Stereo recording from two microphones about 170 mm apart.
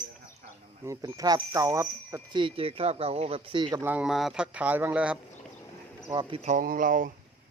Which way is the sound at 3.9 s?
5° right (ahead or behind).